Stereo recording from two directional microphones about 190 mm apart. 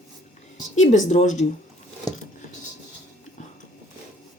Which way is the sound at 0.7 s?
40° left (ahead or behind).